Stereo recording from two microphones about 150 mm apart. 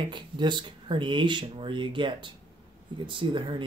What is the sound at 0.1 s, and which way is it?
Speech, 30° right (ahead or behind).